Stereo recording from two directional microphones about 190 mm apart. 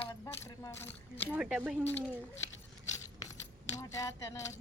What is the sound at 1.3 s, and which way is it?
Speech, 5° right (ahead or behind).